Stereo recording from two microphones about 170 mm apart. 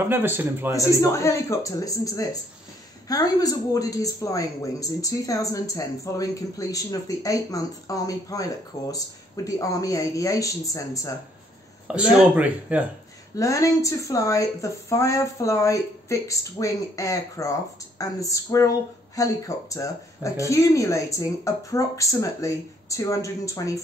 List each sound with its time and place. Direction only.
0.0 s speech: 10° right (ahead or behind)
1.1 s a woman's voice: 15° left (ahead or behind)
11.9 s speech: 5° right (ahead or behind)
13.4 s a woman's voice: 20° left (ahead or behind)